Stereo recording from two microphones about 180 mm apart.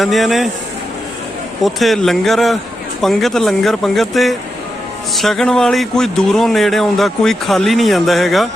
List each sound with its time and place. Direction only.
0.0 s speech: centre (ahead or behind)
1.6 s speech: centre (ahead or behind)